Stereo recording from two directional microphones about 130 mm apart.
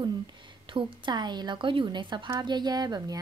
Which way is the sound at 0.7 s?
40° right (ahead or behind).